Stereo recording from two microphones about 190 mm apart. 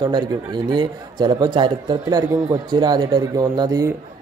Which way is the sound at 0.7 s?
25° right (ahead or behind).